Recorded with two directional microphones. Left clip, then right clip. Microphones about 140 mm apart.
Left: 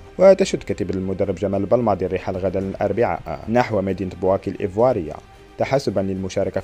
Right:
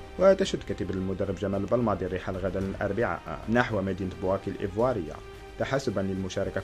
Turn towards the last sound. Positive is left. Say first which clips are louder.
# left 8 dB
turn(degrees=40)  # may be behind; listen again after turning